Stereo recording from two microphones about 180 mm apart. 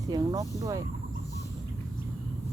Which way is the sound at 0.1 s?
20° right (ahead or behind).